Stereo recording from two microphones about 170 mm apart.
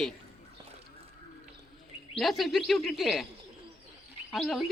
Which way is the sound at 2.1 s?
Centre (ahead or behind).